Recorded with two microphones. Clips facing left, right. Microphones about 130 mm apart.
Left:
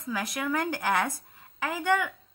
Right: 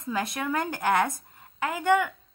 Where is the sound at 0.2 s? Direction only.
25° right (ahead or behind).